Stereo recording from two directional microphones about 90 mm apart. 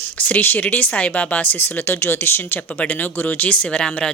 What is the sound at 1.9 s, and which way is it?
Speech, 25° left (ahead or behind).